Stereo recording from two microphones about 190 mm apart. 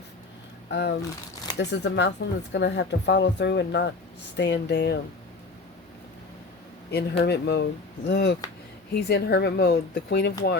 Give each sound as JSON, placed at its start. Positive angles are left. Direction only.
{"t": 0.7, "sound": "speech", "side_deg": 65}
{"t": 6.9, "sound": "speech", "side_deg": 60}